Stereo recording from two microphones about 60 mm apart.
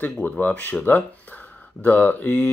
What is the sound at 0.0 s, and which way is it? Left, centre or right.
Speech, left.